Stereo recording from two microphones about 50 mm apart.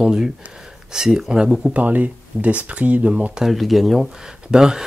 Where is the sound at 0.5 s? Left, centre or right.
Centre.